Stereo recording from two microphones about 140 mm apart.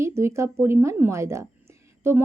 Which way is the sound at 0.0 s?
20° right (ahead or behind).